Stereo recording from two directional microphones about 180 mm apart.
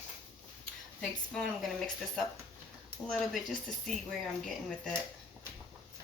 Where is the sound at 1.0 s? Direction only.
Centre (ahead or behind).